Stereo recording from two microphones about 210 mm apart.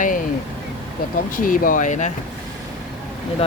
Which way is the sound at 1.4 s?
40° left (ahead or behind).